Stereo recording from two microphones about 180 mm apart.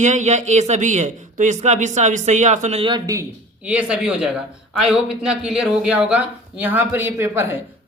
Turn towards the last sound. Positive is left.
turn(degrees=-15)  # may be behind; listen again after turning